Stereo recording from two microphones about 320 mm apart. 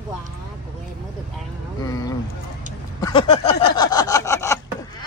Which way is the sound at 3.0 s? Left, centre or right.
Centre.